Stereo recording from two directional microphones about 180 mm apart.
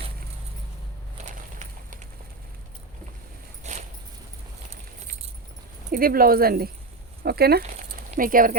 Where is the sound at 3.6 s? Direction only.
40° right (ahead or behind).